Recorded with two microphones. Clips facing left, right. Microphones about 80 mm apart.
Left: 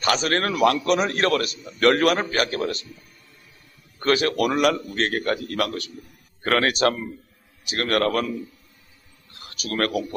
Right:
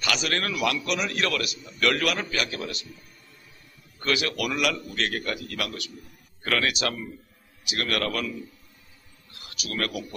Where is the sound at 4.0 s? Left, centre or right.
Left.